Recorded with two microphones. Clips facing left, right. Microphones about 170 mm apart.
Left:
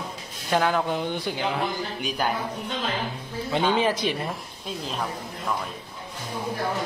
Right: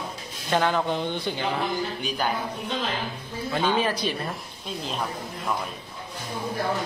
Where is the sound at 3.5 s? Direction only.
20° left (ahead or behind).